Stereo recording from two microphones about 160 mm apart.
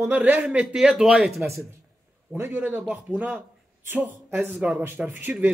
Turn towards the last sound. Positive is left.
turn(degrees=-10)  # may be behind; listen again after turning